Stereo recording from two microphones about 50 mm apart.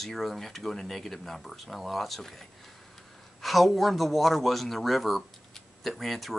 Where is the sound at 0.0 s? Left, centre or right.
Centre.